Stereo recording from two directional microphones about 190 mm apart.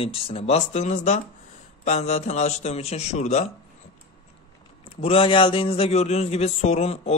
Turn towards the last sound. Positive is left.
turn(degrees=35)  # may be behind; listen again after turning